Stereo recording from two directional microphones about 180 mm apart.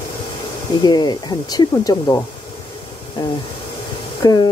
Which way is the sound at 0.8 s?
25° left (ahead or behind).